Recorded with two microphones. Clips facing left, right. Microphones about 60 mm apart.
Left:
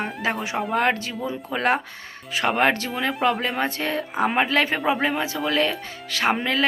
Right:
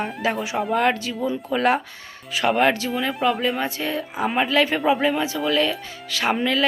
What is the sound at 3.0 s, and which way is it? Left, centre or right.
Speech, left.